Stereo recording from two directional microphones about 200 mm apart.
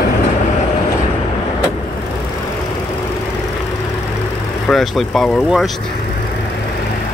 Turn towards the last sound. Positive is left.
turn(degrees=0)  # may be behind; listen again after turning